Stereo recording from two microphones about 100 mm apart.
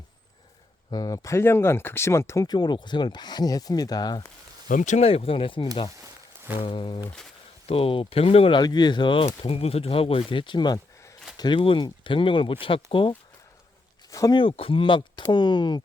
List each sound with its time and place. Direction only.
0.9 s speech: 40° left (ahead or behind)
2.5 s speech: 45° left (ahead or behind)
4.9 s speech: 75° left (ahead or behind); by 7.0 s 55° left (ahead or behind)
7.7 s speech: 70° left (ahead or behind)
8.5 s speech: 45° left (ahead or behind)
9.2 s speech: 85° left; by 13.1 s 60° left (ahead or behind)
14.1 s speech: 35° left (ahead or behind)
14.3 s speech: 65° left (ahead or behind)